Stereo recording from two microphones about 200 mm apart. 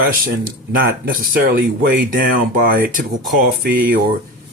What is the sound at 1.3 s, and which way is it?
Speech, 45° right (ahead or behind).